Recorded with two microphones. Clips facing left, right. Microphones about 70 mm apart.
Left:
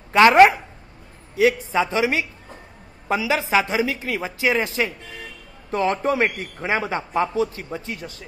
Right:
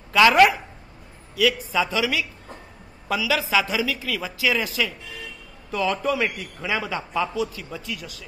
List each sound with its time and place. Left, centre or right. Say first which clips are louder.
0.1 s a woman's voice: left 3 dB; left